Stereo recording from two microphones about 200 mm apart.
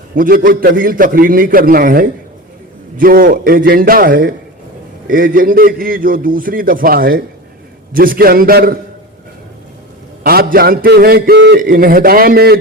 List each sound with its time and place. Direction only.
0.2 s a man's voice: 45° right (ahead or behind)
10.2 s a man's voice: 50° right (ahead or behind)